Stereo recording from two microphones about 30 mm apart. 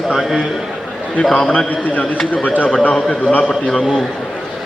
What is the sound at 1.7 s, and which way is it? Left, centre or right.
A man's voice, left.